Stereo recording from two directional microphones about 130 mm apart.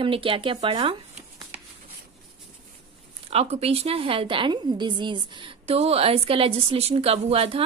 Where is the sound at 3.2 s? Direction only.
50° right (ahead or behind).